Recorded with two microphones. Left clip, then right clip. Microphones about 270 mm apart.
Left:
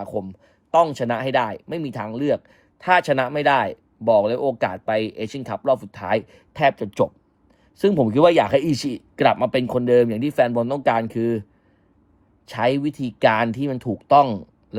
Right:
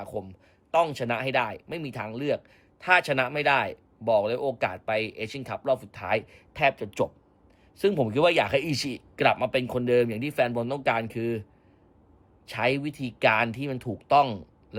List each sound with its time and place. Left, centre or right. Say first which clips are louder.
0.3 s speech: left 7 dB; centre
12.5 s speech: left 6 dB; centre